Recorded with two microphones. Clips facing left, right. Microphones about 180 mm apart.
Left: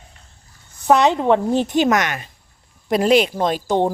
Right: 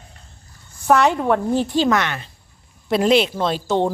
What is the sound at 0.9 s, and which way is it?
A woman's voice, 20° left (ahead or behind).